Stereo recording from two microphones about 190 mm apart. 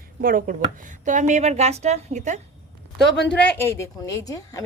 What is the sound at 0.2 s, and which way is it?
A woman's voice, 45° right (ahead or behind).